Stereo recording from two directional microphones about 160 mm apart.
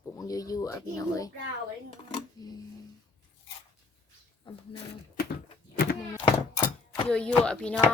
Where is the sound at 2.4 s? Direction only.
25° left (ahead or behind).